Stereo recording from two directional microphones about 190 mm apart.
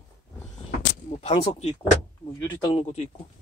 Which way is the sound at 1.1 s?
30° left (ahead or behind).